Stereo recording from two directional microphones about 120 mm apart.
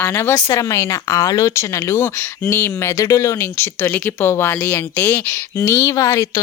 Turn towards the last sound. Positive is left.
turn(degrees=25)  # may be behind; listen again after turning